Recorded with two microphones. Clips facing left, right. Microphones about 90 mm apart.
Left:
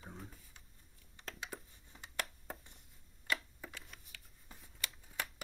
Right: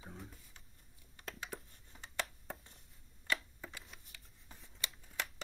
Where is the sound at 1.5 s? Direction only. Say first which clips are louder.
Right 1 dB; 5° left (ahead or behind).